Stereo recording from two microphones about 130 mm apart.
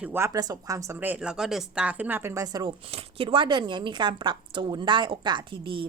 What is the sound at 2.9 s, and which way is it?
Speech, 40° right (ahead or behind).